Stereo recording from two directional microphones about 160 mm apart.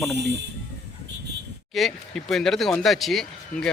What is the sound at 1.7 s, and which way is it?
Speech, centre (ahead or behind).